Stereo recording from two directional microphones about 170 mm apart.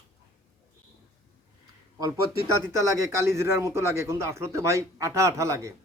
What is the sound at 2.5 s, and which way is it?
A man's voice, 20° right (ahead or behind).